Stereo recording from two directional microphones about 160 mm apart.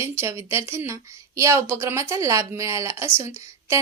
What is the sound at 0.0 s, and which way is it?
Speech, 15° right (ahead or behind).